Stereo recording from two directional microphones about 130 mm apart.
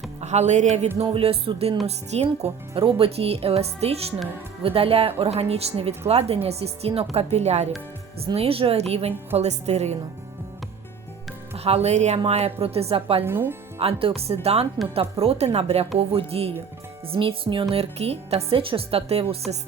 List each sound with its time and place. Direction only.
0.2 s speech: 60° right (ahead or behind)
1.1 s a woman's voice: 45° right (ahead or behind)
11.5 s speech: 50° right (ahead or behind)
13.2 s speech: 20° right (ahead or behind)
13.7 s speech: 50° right (ahead or behind)